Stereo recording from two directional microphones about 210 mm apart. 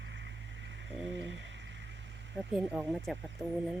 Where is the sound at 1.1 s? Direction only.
60° right (ahead or behind).